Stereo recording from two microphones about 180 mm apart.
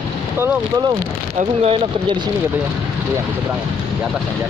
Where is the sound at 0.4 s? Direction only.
20° right (ahead or behind).